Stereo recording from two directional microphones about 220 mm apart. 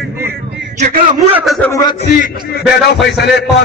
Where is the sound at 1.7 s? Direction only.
20° left (ahead or behind).